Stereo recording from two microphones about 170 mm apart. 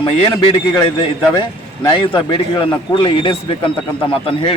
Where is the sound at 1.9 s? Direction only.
30° left (ahead or behind).